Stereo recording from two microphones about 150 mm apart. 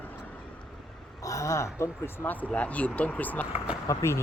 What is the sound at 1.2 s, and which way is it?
Speech, 20° left (ahead or behind).